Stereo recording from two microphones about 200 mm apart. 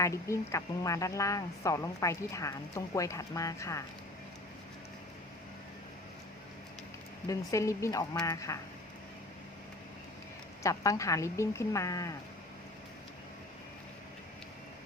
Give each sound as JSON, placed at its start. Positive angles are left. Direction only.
{"t": 0.0, "sound": "speech", "side_deg": 15}
{"t": 7.3, "sound": "speech", "side_deg": 15}
{"t": 10.6, "sound": "speech", "side_deg": 15}